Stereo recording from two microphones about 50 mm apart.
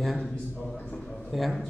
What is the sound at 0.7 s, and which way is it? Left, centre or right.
Speech, left.